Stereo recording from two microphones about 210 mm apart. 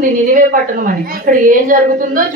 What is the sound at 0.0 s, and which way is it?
A woman's voice, 40° right (ahead or behind).